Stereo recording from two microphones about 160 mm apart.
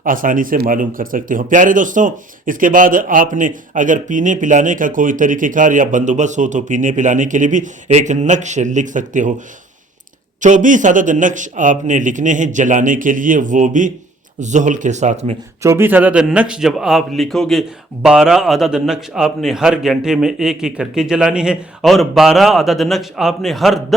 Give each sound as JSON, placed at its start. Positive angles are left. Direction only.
{"t": 0.0, "sound": "speech", "side_deg": -60}
{"t": 10.4, "sound": "speech", "side_deg": -50}
{"t": 15.6, "sound": "a man's voice", "side_deg": -15}